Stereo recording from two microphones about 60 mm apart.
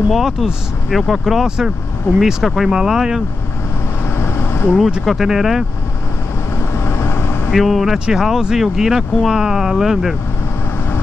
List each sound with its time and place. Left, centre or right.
0.1 s speech: centre
4.2 s a sound: left
4.7 s speech: centre
6.7 s vehicle: left
7.5 s speech: centre